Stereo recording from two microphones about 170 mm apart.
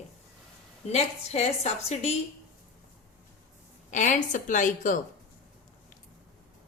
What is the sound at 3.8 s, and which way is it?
A woman's voice, 45° left (ahead or behind).